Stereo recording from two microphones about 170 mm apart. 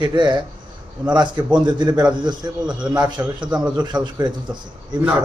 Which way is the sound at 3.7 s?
25° right (ahead or behind).